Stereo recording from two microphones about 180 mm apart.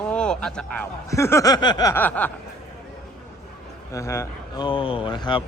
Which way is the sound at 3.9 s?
15° left (ahead or behind).